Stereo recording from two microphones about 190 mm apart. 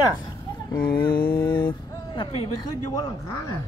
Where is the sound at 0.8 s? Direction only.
55° left (ahead or behind).